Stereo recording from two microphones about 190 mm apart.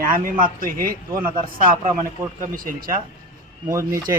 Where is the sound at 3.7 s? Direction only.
15° right (ahead or behind).